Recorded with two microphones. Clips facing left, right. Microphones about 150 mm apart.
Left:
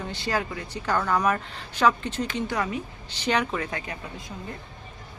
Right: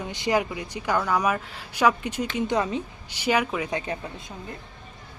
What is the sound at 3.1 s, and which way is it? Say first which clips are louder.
Speech: right 1 dB; 10° right (ahead or behind).